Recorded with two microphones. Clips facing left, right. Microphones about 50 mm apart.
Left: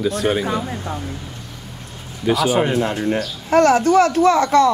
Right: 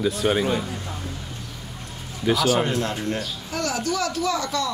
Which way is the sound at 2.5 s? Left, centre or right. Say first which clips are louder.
Left 4 dB; centre.